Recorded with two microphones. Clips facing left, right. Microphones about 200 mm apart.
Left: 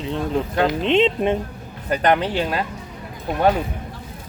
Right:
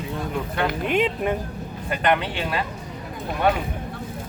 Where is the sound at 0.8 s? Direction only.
25° left (ahead or behind).